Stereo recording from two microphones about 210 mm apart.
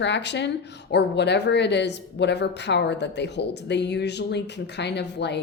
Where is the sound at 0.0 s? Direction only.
55° left (ahead or behind).